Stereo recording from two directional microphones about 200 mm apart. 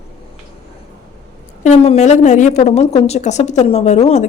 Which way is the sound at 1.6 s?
35° left (ahead or behind).